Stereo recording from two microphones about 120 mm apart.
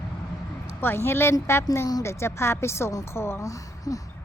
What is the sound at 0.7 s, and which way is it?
A woman's voice, 20° left (ahead or behind).